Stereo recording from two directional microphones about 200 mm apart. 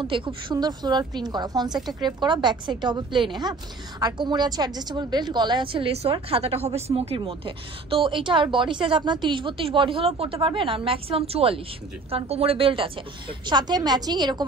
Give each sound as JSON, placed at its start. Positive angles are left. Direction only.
{"t": 0.0, "sound": "a woman's voice", "side_deg": -25}